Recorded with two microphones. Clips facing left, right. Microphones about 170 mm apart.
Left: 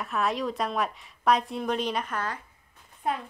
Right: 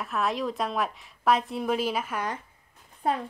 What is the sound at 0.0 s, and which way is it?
A woman's voice, centre (ahead or behind).